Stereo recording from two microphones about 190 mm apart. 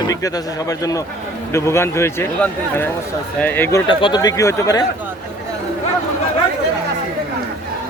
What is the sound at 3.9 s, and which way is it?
Speech, 25° left (ahead or behind).